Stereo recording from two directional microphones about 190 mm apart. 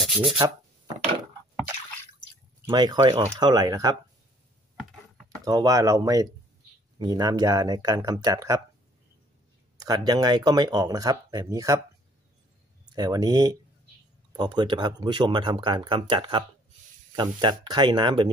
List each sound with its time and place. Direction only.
2.6 s speech: 20° right (ahead or behind)
5.4 s speech: 20° right (ahead or behind)
9.8 s speech: 20° right (ahead or behind)
12.9 s speech: 20° right (ahead or behind)